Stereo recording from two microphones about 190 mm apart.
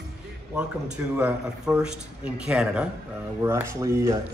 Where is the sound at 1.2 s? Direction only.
5° right (ahead or behind).